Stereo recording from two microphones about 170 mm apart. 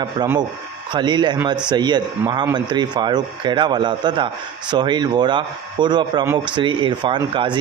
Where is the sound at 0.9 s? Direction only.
25° right (ahead or behind).